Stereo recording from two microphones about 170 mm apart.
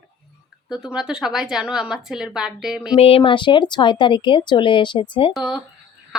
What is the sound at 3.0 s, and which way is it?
Speech, 35° left (ahead or behind).